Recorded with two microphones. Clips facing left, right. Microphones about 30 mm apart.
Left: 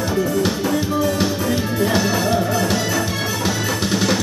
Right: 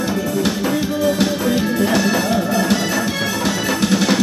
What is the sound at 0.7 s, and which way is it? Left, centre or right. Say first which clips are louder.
Music: right 1 dB; centre.